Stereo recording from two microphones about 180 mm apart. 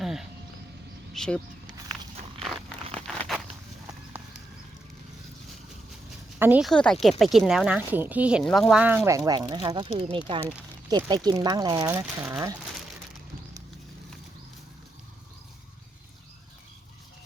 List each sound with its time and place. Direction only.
0.0 s a sound: centre (ahead or behind)
1.1 s speech: 5° left (ahead or behind)
2.9 s a sound: centre (ahead or behind)
6.4 s speech: 10° right (ahead or behind)
6.7 s speech: centre (ahead or behind)
9.0 s speech: 20° right (ahead or behind)